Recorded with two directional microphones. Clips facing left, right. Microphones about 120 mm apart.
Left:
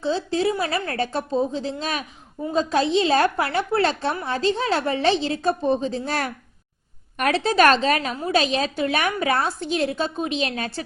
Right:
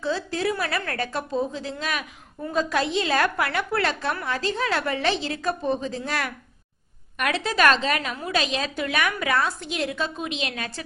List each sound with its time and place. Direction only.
0.0 s a woman's voice: 25° left (ahead or behind)